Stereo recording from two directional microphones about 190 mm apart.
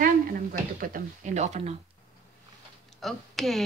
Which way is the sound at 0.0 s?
50° right (ahead or behind).